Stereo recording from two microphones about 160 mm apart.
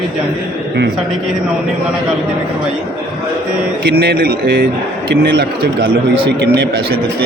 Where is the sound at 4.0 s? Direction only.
80° right.